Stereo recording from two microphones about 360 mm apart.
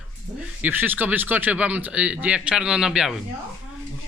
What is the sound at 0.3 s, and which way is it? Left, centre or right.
Speech, centre.